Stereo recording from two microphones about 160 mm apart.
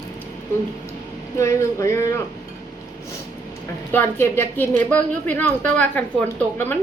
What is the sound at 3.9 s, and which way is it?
A woman's voice, 15° left (ahead or behind).